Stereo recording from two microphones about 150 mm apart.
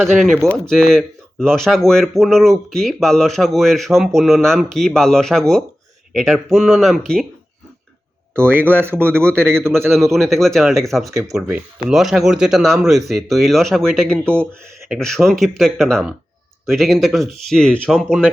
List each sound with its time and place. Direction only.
0.0 s speech: centre (ahead or behind)
8.4 s speech: 15° right (ahead or behind)
9.7 s speech: centre (ahead or behind)
11.1 s speech: 20° right (ahead or behind)
11.9 s speech: 5° right (ahead or behind)